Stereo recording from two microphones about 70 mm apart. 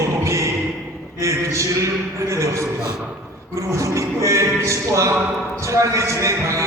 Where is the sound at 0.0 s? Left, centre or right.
Right.